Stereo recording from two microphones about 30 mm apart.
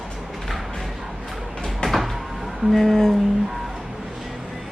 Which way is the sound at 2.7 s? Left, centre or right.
Centre.